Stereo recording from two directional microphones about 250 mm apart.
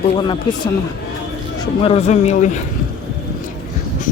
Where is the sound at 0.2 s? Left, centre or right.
Centre.